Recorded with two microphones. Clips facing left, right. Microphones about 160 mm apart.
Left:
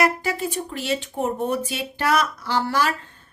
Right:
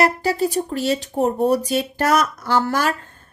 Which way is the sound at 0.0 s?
35° right (ahead or behind).